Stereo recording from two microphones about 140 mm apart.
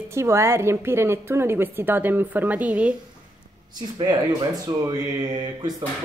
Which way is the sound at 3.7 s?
30° right (ahead or behind).